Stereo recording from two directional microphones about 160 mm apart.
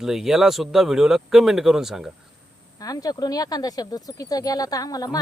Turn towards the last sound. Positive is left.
turn(degrees=25)  # may be behind; listen again after turning